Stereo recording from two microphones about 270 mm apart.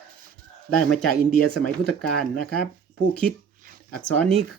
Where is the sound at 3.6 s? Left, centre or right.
Right.